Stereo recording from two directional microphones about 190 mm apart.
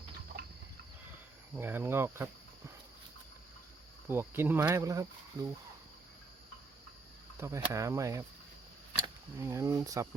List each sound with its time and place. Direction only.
1.5 s speech: 10° right (ahead or behind)
4.1 s speech: 10° right (ahead or behind)
7.3 s speech: 15° right (ahead or behind)
9.4 s speech: 15° right (ahead or behind)